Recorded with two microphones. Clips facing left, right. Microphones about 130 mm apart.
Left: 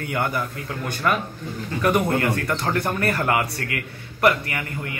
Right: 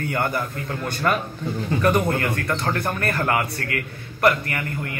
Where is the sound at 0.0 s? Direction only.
10° left (ahead or behind).